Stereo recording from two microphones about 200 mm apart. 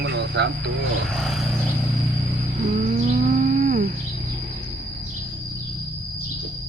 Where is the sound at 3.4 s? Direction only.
40° right (ahead or behind).